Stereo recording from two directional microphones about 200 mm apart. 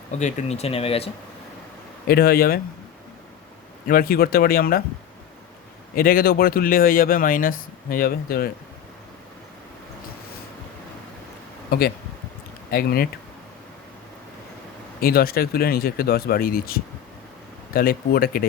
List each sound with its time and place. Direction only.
0.2 s speech: 35° left (ahead or behind)
2.0 s speech: 50° left (ahead or behind)
3.8 s speech: 45° left (ahead or behind)
6.0 s speech: 45° left (ahead or behind)
12.7 s speech: 50° left (ahead or behind)
15.0 s speech: 50° left (ahead or behind)